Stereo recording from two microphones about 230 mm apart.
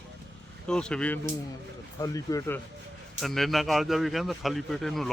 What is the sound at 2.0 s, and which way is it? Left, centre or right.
Speech, centre.